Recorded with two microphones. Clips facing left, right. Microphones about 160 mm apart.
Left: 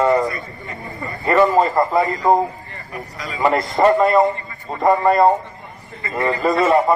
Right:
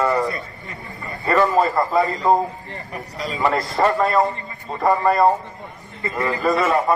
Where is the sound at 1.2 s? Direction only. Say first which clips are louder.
Left 3 dB; 20° left (ahead or behind).